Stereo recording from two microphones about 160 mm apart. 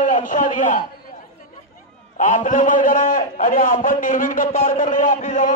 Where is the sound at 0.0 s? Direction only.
55° left (ahead or behind).